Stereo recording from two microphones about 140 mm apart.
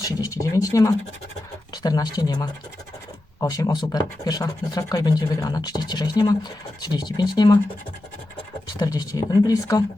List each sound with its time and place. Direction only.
0.0 s speech: 25° left (ahead or behind)
8.8 s speech: 30° left (ahead or behind)